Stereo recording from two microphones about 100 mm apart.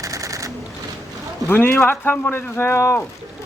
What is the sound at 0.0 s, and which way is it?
Sewing machine, 35° right (ahead or behind).